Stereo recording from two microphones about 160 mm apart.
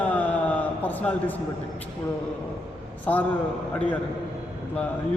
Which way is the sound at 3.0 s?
10° left (ahead or behind).